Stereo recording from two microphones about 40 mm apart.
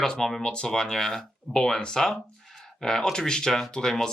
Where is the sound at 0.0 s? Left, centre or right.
Centre.